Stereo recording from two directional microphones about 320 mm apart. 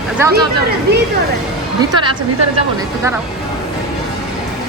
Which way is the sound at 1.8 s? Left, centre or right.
Centre.